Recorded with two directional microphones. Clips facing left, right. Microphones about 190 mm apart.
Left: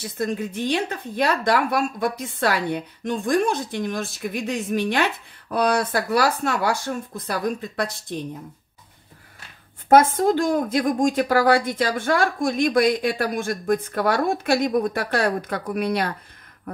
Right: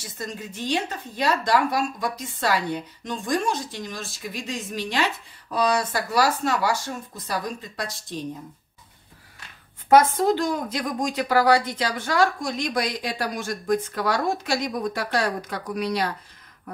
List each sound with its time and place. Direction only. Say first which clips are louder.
0.0 s speech: left 9 dB; 55° left (ahead or behind)
9.8 s a woman's voice: left 1 dB; 50° left (ahead or behind)